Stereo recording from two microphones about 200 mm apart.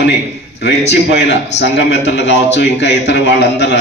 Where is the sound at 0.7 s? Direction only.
60° left (ahead or behind).